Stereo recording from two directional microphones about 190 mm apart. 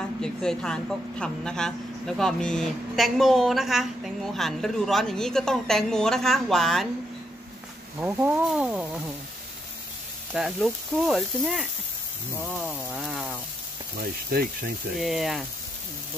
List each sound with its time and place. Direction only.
0.2 s a woman's voice: 5° left (ahead or behind)
8.0 s a woman's voice: 10° right (ahead or behind)
10.3 s a woman's voice: centre (ahead or behind)
13.9 s speech: 50° right (ahead or behind)
15.0 s a woman's voice: centre (ahead or behind)